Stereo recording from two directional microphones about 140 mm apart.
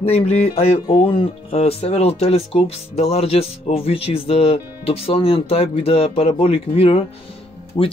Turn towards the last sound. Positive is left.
turn(degrees=40)  # may be behind; listen again after turning